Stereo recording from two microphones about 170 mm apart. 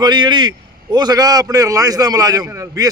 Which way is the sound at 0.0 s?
25° right (ahead or behind).